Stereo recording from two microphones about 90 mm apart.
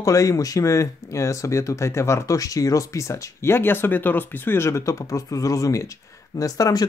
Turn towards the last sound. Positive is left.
turn(degrees=45)  # may be behind; listen again after turning